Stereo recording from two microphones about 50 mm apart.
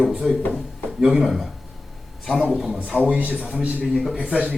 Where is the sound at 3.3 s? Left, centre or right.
Centre.